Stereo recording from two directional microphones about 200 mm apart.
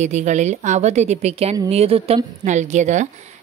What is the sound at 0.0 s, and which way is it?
A woman's voice, 35° right (ahead or behind).